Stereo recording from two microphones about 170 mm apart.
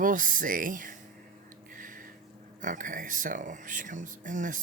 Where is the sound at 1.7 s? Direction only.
55° right (ahead or behind).